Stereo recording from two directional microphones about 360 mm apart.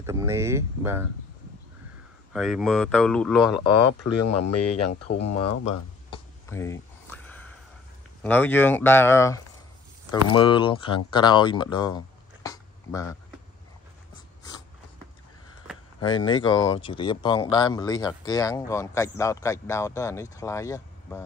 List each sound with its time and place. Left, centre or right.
0.0 s speech: centre
2.3 s speech: centre
3.8 s speech: left
6.0 s a sound: centre
8.2 s speech: centre
12.4 s a sound: centre
16.3 s speech: centre